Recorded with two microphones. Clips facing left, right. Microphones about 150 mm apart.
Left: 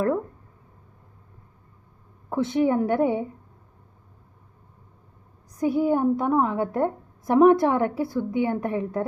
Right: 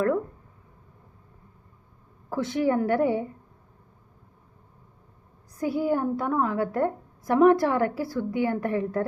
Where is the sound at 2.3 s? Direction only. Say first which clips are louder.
Left 2 dB; 25° left (ahead or behind).